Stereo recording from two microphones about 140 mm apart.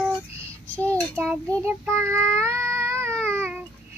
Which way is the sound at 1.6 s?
15° right (ahead or behind).